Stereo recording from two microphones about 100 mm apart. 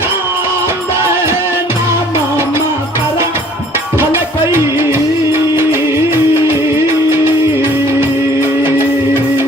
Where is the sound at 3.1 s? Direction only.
25° right (ahead or behind).